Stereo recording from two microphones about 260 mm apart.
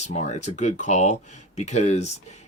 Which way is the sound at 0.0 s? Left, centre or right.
Left.